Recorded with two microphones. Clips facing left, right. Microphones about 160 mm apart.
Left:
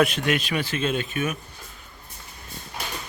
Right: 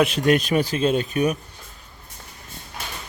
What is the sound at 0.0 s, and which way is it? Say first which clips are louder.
A man's voice: right 4 dB; 35° right (ahead or behind).